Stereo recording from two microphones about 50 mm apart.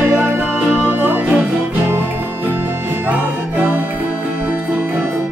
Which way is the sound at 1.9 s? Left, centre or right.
Right.